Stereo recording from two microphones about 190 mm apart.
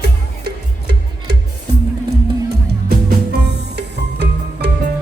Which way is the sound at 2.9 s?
60° right (ahead or behind).